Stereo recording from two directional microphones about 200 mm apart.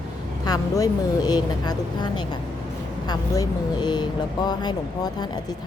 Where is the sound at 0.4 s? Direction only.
20° left (ahead or behind).